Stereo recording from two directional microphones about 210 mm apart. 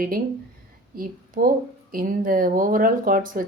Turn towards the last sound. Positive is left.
turn(degrees=-40)  # may be behind; listen again after turning